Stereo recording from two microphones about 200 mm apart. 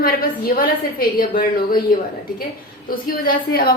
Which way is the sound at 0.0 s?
45° left (ahead or behind).